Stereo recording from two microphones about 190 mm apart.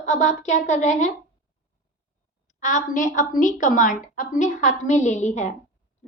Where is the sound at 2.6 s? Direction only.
40° left (ahead or behind).